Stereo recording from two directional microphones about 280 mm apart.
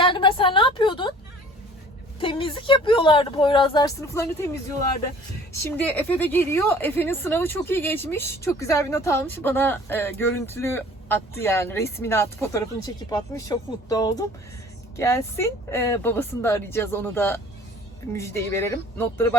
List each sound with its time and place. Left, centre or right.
0.0 s a woman's voice: centre
2.2 s a woman's voice: centre
5.6 s a woman's voice: centre